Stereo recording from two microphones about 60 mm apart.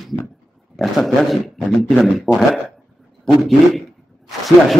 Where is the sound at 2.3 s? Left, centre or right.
Left.